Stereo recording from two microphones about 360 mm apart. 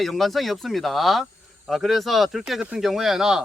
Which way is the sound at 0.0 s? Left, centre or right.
Centre.